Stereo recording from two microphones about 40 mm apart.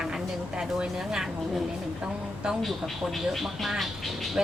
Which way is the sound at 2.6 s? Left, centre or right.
Centre.